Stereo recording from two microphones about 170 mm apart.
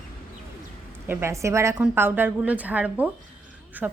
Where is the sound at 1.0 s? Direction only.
15° right (ahead or behind).